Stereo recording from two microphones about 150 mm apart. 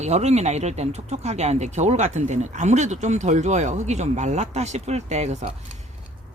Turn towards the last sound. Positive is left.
turn(degrees=-50)  # may be behind; listen again after turning